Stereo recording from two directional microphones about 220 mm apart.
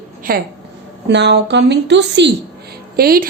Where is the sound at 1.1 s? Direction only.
50° right (ahead or behind).